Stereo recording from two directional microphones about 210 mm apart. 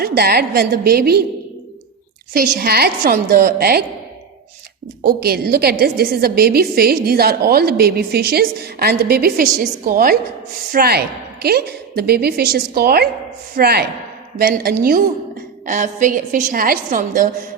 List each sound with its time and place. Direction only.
0.0 s a woman's voice: 50° right (ahead or behind)
2.3 s a woman's voice: 45° right (ahead or behind)
5.0 s a woman's voice: 45° right (ahead or behind)